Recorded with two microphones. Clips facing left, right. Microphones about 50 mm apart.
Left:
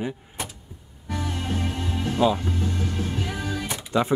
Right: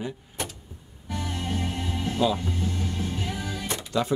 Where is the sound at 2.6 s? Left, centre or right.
Left.